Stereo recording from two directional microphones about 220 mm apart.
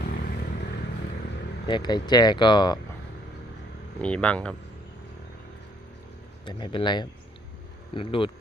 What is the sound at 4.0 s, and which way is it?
Speech, 5° left (ahead or behind).